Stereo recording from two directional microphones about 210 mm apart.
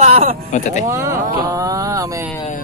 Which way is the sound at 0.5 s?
35° left (ahead or behind).